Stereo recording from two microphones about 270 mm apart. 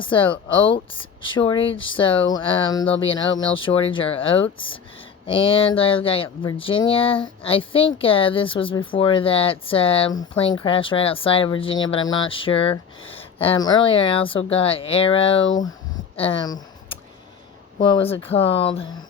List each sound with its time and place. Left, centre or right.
0.0 s a woman's voice: centre
16.1 s a sound: centre
17.7 s a woman's voice: centre